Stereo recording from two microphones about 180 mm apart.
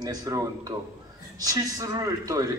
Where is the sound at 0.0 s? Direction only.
20° right (ahead or behind).